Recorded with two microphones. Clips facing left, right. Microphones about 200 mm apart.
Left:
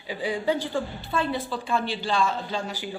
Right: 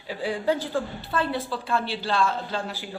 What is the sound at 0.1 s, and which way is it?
A woman's voice, centre (ahead or behind).